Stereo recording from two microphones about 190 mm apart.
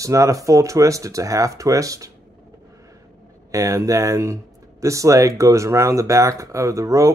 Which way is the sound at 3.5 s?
15° right (ahead or behind).